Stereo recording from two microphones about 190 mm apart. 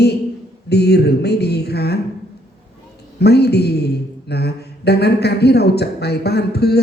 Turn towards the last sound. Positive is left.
turn(degrees=60)  # may be behind; listen again after turning